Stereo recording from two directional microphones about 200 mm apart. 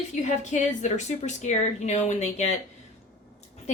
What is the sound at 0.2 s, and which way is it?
A woman's voice, 35° left (ahead or behind).